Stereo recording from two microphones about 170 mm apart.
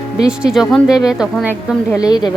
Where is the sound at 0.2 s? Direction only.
5° right (ahead or behind).